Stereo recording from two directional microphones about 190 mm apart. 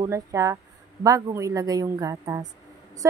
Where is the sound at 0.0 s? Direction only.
15° right (ahead or behind).